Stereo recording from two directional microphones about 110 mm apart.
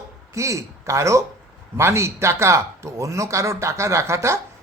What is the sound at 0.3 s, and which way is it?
Speech, 25° right (ahead or behind).